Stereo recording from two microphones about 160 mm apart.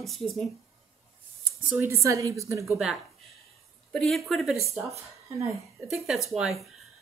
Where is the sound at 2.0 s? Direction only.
20° right (ahead or behind).